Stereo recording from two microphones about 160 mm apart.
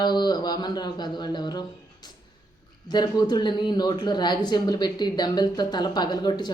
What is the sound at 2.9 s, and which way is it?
Speech, 25° left (ahead or behind).